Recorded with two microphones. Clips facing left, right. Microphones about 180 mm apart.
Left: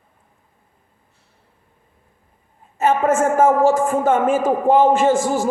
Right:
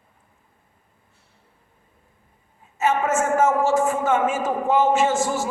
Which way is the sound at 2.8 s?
55° left (ahead or behind).